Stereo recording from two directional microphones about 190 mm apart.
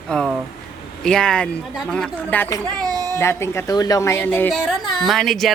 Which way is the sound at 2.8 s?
20° right (ahead or behind).